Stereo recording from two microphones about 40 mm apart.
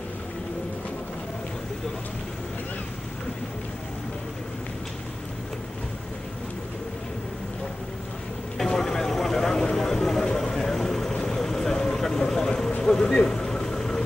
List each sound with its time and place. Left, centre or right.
8.5 s vehicle: centre
12.8 s a sound: centre
13.3 s vehicle: centre